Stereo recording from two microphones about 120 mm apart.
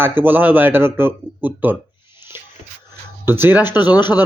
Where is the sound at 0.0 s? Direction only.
15° right (ahead or behind).